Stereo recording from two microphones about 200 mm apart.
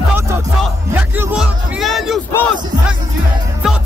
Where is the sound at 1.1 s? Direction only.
Centre (ahead or behind).